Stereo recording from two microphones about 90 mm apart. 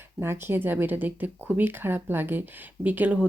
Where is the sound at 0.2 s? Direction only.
25° right (ahead or behind).